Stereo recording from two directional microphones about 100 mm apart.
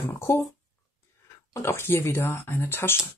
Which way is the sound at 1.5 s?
25° left (ahead or behind).